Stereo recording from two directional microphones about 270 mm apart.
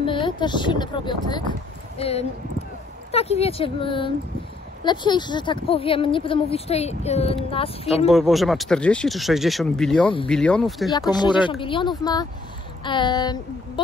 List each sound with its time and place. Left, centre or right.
0.0 s speech: centre
8.1 s speech: centre
10.9 s speech: centre